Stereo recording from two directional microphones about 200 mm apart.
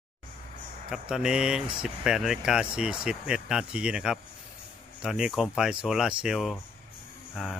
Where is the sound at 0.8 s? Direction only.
5° right (ahead or behind).